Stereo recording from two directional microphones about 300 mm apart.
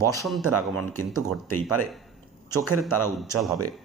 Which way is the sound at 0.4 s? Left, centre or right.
Right.